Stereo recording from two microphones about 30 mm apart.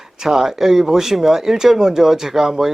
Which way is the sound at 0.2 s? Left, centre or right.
Centre.